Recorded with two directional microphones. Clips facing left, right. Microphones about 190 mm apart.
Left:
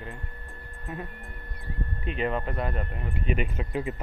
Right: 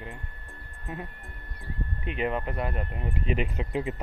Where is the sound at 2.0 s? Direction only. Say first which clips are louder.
Even; 15° right (ahead or behind).